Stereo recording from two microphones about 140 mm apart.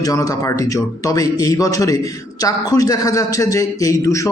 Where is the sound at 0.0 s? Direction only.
25° left (ahead or behind).